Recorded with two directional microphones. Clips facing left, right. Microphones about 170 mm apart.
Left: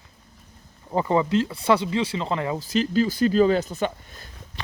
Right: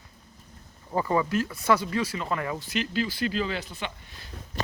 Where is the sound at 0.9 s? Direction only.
25° left (ahead or behind).